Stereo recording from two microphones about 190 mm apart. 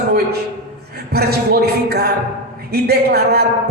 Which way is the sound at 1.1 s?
55° right (ahead or behind).